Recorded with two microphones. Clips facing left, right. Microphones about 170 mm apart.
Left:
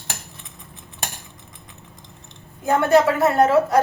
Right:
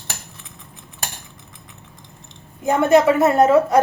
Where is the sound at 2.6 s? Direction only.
15° right (ahead or behind).